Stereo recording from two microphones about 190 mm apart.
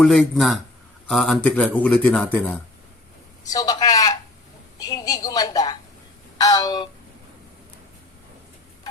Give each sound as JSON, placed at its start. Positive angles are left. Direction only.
{"t": 0.0, "sound": "a man's voice", "side_deg": 0}